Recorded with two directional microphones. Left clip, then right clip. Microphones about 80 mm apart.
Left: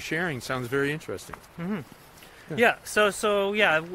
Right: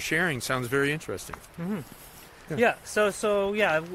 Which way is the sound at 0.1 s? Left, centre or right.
Centre.